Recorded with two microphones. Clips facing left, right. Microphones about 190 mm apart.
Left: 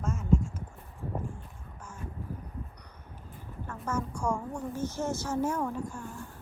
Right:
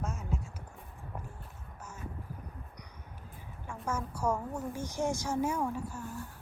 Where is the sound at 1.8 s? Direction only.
10° right (ahead or behind).